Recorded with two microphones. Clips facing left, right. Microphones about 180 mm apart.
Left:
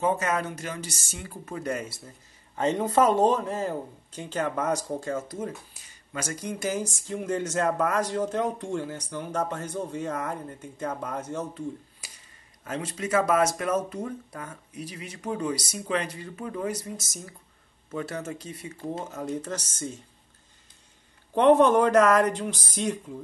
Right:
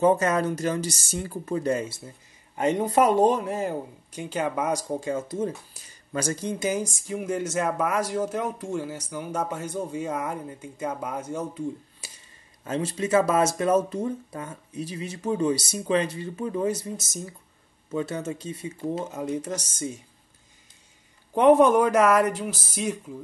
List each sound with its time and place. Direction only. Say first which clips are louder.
0.0 s speech: right 5 dB; 35° right (ahead or behind)
2.5 s speech: right 1 dB; 10° right (ahead or behind)
12.6 s speech: right 4 dB; 30° right (ahead or behind); by 20.0 s 10° right (ahead or behind)
21.4 s speech: right 1 dB; 10° right (ahead or behind)